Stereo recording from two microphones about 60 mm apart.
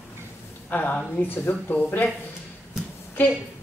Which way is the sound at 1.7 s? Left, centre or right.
Left.